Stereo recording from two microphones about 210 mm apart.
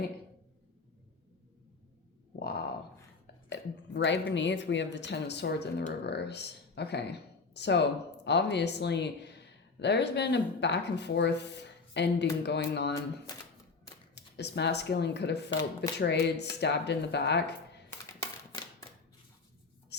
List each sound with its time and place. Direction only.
2.4 s a sound: 50° left (ahead or behind)
3.5 s speech: 55° left (ahead or behind)
14.2 s speech: 55° left (ahead or behind)
18.0 s typewriter: 15° left (ahead or behind)
19.9 s writing: 55° left (ahead or behind)